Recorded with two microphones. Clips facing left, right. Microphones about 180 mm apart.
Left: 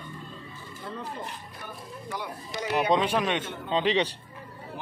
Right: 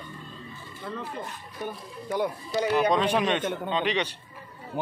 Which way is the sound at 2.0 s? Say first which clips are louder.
Right 9 dB; 50° right (ahead or behind).